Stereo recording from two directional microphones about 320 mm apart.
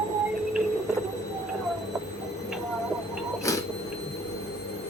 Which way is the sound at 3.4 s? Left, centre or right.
Centre.